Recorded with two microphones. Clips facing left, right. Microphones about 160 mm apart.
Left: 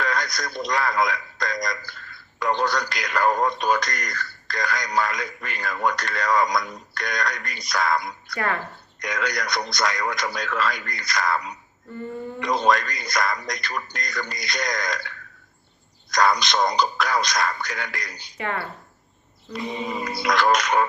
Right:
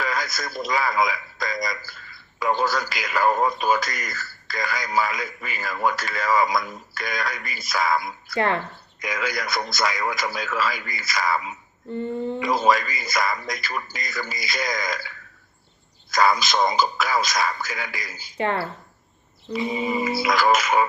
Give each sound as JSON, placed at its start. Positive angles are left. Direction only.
{"t": 0.0, "sound": "speech", "side_deg": -5}
{"t": 8.4, "sound": "speech", "side_deg": -25}
{"t": 9.0, "sound": "speech", "side_deg": -5}
{"t": 11.9, "sound": "speech", "side_deg": -25}
{"t": 12.4, "sound": "speech", "side_deg": -5}
{"t": 18.3, "sound": "speech", "side_deg": -30}
{"t": 19.5, "sound": "speech", "side_deg": 0}